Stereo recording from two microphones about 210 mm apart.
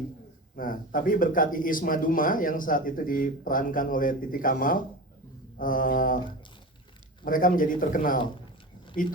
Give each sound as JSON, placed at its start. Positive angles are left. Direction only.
{"t": 0.5, "sound": "speech", "side_deg": 40}
{"t": 7.3, "sound": "speech", "side_deg": 40}